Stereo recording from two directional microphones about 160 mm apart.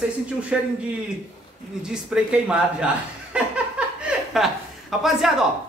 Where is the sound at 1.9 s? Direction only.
5° right (ahead or behind).